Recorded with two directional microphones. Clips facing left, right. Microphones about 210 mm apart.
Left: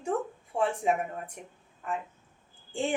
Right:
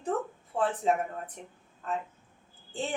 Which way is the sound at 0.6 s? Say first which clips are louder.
Even; 10° left (ahead or behind).